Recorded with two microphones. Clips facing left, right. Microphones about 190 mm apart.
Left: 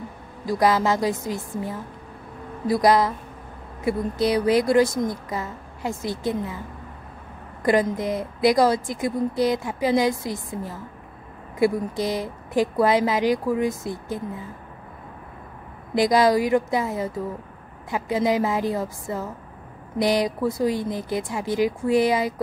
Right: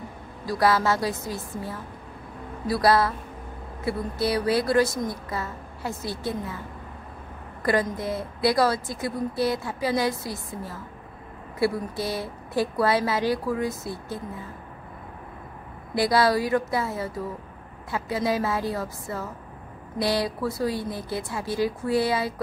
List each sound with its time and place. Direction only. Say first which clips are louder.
0.5 s speech: left 2 dB; 20° left (ahead or behind)
7.6 s speech: left 4 dB; 20° left (ahead or behind)
12.0 s speech: left 3 dB; 15° left (ahead or behind)
15.9 s speech: left 3 dB; 20° left (ahead or behind)